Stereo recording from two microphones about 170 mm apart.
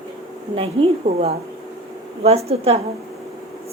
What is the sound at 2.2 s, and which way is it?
Speech, 35° right (ahead or behind).